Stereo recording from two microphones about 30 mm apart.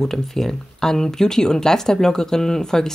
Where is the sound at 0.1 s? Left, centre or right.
Centre.